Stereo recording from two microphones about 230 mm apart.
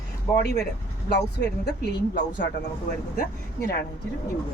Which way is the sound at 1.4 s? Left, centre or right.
Left.